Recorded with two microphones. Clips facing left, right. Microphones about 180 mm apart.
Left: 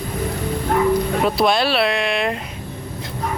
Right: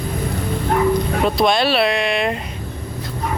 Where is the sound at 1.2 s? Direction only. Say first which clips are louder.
Right 2 dB; 5° left (ahead or behind).